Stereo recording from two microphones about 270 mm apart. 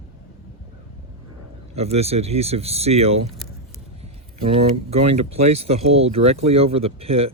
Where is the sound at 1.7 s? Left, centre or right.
Right.